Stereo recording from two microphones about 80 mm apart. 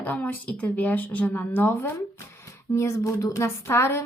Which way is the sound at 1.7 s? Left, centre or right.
Left.